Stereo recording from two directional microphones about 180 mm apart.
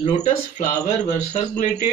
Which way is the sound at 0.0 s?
40° left (ahead or behind).